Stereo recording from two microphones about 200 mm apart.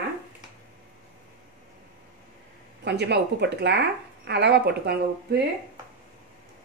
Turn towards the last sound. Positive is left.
turn(degrees=-55)  # may be behind; listen again after turning